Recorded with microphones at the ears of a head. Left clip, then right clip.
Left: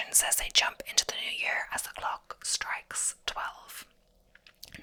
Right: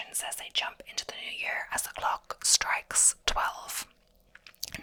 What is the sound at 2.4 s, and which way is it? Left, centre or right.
Speech, right.